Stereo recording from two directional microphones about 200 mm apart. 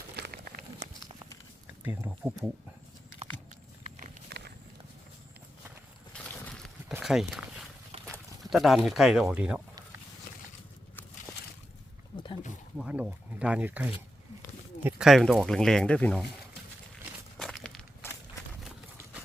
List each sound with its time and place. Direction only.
0.2 s a sound: 45° right (ahead or behind)
1.8 s speech: 10° right (ahead or behind)
4.0 s walk: 40° right (ahead or behind)
6.1 s a sound: 5° left (ahead or behind)
6.9 s clip-clop: centre (ahead or behind)
8.0 s speech: centre (ahead or behind)
12.1 s wild animals: 25° left (ahead or behind)
12.7 s speech: 5° right (ahead or behind)
17.3 s walk: centre (ahead or behind)